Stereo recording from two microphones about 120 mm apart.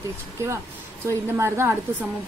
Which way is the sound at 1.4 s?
20° right (ahead or behind).